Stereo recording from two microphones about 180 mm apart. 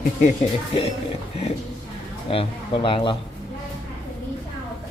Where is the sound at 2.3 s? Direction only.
30° left (ahead or behind).